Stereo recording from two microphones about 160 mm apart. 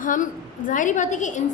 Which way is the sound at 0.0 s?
55° left (ahead or behind).